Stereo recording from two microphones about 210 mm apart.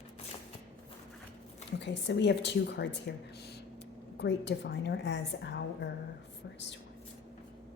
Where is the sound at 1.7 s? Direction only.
55° left (ahead or behind).